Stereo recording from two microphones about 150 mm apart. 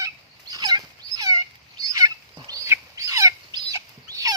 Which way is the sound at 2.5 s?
20° right (ahead or behind).